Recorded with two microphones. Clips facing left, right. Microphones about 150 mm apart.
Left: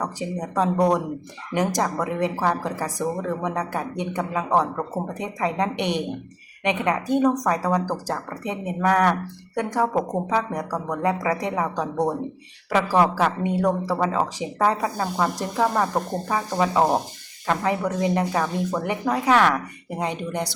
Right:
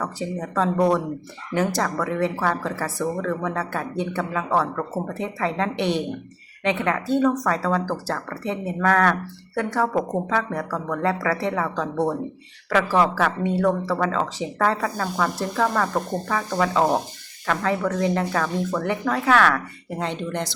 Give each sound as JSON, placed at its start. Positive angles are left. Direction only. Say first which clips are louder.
{"t": 0.0, "sound": "speech", "louder": "even", "side_deg": 15}